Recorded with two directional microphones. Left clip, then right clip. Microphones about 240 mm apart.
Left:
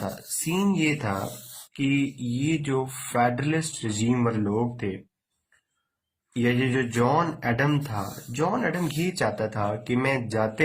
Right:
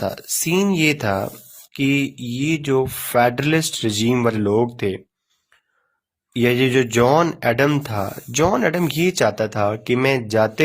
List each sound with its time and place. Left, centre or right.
0.0 s speech: right
6.3 s speech: right